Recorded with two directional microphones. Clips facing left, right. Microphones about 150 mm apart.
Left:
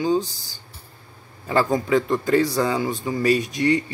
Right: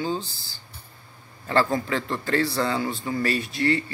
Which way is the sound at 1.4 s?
15° left (ahead or behind).